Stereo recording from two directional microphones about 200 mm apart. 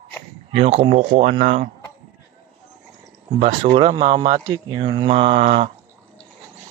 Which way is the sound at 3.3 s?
30° right (ahead or behind).